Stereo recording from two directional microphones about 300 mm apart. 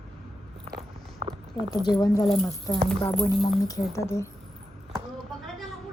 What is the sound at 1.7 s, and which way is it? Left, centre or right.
Speech, centre.